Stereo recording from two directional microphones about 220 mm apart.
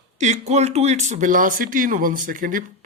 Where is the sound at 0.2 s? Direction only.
30° right (ahead or behind).